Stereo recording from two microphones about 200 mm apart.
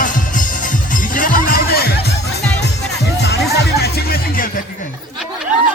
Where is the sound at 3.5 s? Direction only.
50° left (ahead or behind).